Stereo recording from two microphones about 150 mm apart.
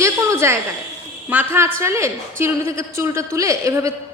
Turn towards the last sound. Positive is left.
turn(degrees=-20)  # may be behind; listen again after turning